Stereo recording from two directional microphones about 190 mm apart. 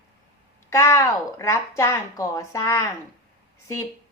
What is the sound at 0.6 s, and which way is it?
A woman's voice, 15° left (ahead or behind).